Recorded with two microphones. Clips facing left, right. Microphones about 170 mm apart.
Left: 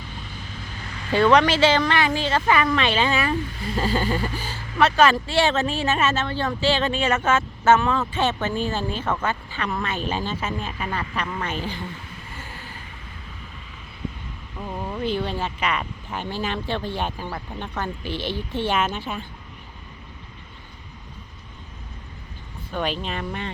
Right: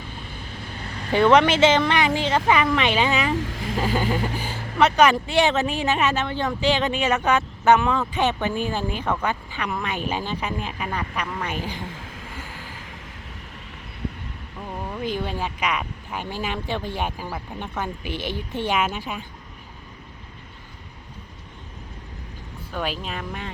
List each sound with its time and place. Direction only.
0.8 s vehicle: 35° right (ahead or behind)
1.1 s speech: 20° right (ahead or behind)
3.3 s speech: 90° right
3.8 s speech: 15° right (ahead or behind)
11.9 s a sound: 90° right
12.5 s vehicle: 90° right
14.7 s speech: centre (ahead or behind)
18.1 s a woman's voice: 50° right (ahead or behind)
18.5 s speech: 10° right (ahead or behind)
22.7 s speech: 5° right (ahead or behind)